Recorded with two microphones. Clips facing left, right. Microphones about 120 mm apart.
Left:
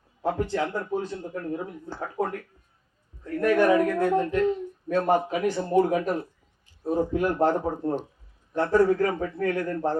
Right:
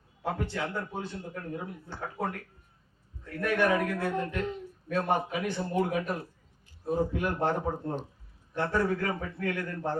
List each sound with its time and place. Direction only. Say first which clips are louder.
0.2 s a man's voice: left 6 dB; 40° left (ahead or behind)
3.2 s a man's voice: left 6 dB; 40° left (ahead or behind)